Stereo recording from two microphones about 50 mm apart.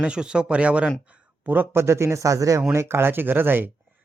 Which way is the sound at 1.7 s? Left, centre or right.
Right.